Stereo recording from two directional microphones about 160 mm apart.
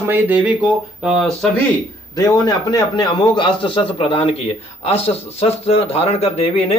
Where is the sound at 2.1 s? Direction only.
20° left (ahead or behind); by 6.8 s 40° left (ahead or behind).